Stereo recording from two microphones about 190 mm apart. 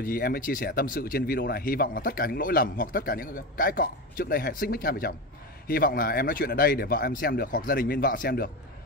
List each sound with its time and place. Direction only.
0.0 s speech: 50° left (ahead or behind)